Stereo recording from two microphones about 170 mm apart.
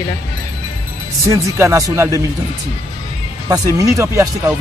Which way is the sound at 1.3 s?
15° right (ahead or behind).